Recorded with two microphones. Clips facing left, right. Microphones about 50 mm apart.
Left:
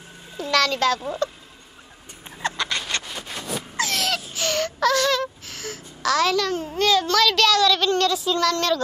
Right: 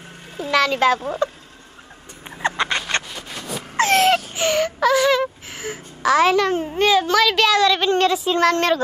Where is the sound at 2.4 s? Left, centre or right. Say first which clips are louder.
Right 5 dB; right.